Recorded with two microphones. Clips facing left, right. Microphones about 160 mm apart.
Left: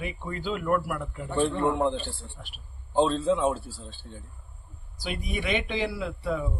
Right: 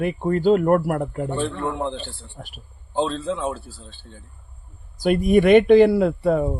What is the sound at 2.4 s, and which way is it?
Speech, 50° right (ahead or behind).